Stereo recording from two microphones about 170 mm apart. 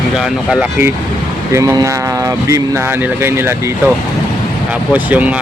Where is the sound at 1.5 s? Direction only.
20° right (ahead or behind).